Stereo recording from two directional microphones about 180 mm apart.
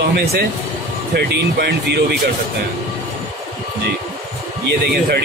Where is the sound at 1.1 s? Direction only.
65° right (ahead or behind).